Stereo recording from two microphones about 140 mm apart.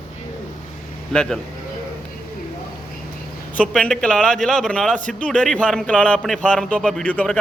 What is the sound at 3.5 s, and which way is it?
A man's voice, 10° left (ahead or behind).